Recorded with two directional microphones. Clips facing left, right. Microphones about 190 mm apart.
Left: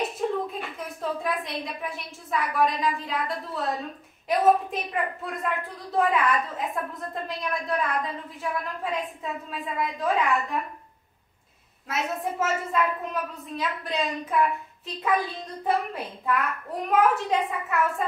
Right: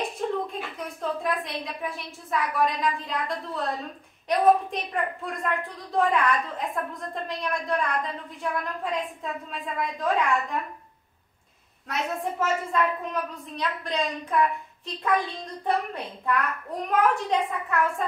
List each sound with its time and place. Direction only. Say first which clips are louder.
0.5 s a woman's voice: even; centre (ahead or behind)
11.9 s a woman's voice: even; 5° left (ahead or behind)